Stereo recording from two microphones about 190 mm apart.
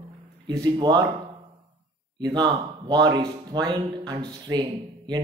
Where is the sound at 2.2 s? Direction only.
20° right (ahead or behind).